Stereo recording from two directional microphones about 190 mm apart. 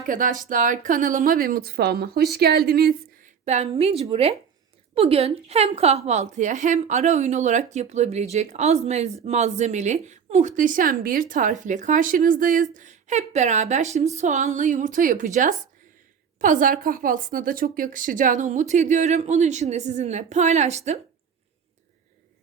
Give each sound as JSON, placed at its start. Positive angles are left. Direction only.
{"t": 0.0, "sound": "a woman's voice", "side_deg": -45}
{"t": 3.4, "sound": "a woman's voice", "side_deg": -35}